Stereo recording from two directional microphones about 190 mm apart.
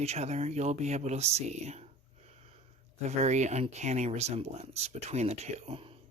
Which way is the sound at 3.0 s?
35° right (ahead or behind).